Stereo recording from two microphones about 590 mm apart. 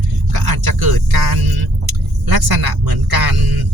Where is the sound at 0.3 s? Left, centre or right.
Right.